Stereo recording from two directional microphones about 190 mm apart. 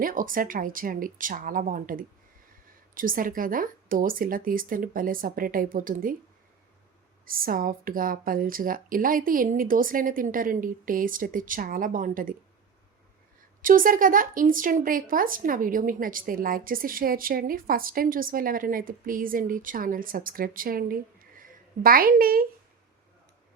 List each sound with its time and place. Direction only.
0.0 s speech: 45° right (ahead or behind)
7.3 s speech: 50° right (ahead or behind)
13.6 s speech: 45° right (ahead or behind)